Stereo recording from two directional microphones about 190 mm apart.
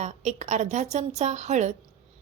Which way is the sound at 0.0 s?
35° right (ahead or behind).